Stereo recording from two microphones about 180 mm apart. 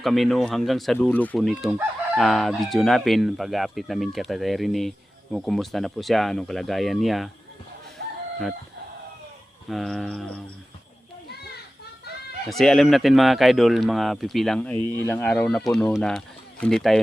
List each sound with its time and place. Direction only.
0.0 s speech: centre (ahead or behind)
8.0 s chicken: 65° right (ahead or behind)
9.6 s speech: centre (ahead or behind)
11.3 s children playing: 60° left (ahead or behind)
12.5 s speech: centre (ahead or behind)